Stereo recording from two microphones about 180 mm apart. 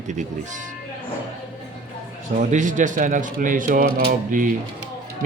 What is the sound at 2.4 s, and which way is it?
Speech, 45° right (ahead or behind).